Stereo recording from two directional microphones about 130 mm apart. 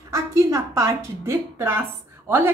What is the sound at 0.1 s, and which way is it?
A woman's voice, 25° right (ahead or behind).